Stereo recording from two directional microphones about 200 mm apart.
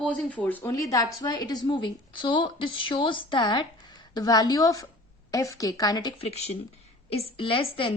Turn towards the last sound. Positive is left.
turn(degrees=25)  # may be behind; listen again after turning